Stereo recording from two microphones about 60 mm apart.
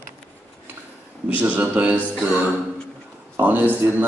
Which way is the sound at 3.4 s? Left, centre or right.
Right.